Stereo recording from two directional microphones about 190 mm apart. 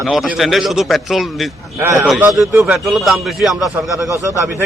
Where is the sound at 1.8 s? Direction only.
10° right (ahead or behind).